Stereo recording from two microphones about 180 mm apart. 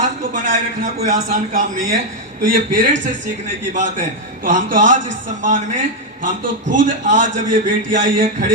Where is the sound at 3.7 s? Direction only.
45° right (ahead or behind).